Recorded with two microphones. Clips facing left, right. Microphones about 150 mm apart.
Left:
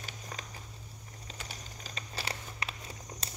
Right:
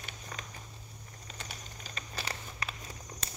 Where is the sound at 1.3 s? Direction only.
30° left (ahead or behind).